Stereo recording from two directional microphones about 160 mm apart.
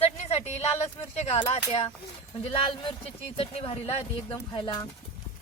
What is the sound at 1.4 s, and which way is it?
Speech, 30° left (ahead or behind).